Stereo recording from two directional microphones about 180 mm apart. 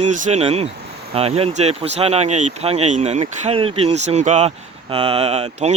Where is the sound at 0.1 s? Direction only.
40° right (ahead or behind).